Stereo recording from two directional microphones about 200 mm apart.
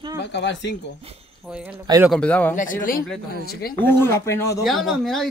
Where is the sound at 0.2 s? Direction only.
60° left (ahead or behind).